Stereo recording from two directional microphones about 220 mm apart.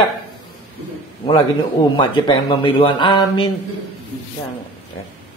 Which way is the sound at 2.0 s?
20° left (ahead or behind).